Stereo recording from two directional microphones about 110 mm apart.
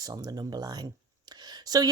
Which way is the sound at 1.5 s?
35° right (ahead or behind).